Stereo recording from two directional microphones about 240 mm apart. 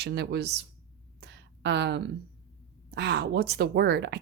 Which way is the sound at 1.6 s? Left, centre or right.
Right.